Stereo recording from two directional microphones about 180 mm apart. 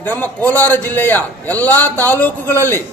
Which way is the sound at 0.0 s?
10° left (ahead or behind).